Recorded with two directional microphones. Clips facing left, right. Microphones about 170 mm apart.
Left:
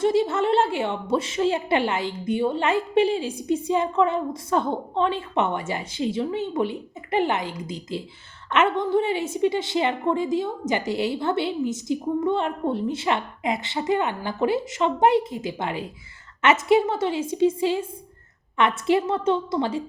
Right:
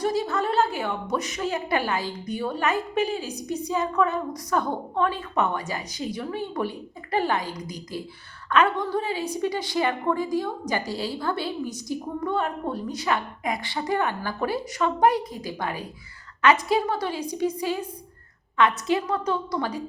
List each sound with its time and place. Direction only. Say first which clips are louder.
0.0 s a woman's voice: left 4 dB; 25° left (ahead or behind)